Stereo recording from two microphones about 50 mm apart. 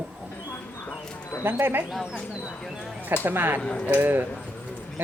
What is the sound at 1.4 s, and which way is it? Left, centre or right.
Speech, right.